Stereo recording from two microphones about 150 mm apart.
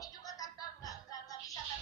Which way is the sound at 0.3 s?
25° left (ahead or behind).